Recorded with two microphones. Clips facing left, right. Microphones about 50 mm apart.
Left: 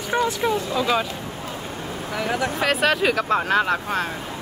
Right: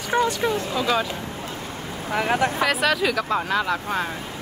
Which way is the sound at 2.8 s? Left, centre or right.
Left.